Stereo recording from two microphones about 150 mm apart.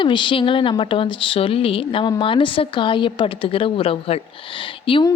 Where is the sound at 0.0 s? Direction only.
35° left (ahead or behind).